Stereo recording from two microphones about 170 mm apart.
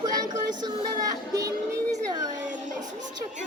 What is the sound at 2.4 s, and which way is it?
Child singing, 45° right (ahead or behind).